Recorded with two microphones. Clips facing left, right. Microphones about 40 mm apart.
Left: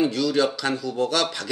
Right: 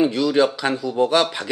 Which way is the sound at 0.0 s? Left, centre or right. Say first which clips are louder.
Right 4 dB; centre.